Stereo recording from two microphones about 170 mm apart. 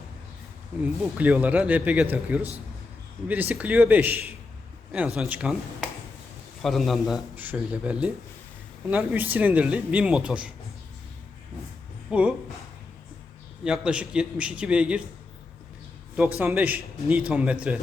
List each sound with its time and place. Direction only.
0.8 s a man's voice: 10° right (ahead or behind)
12.1 s speech: 5° right (ahead or behind)
13.7 s a man's voice: 5° right (ahead or behind)
16.4 s a man's voice: 10° right (ahead or behind)